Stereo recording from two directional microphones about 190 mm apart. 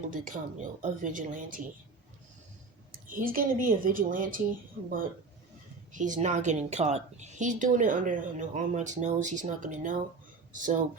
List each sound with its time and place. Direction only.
0.1 s speech: 45° right (ahead or behind)
3.1 s speech: 45° right (ahead or behind)
5.9 s a woman's voice: 40° right (ahead or behind)